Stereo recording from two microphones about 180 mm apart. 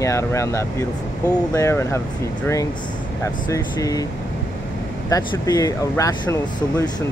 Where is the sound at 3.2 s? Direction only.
20° left (ahead or behind).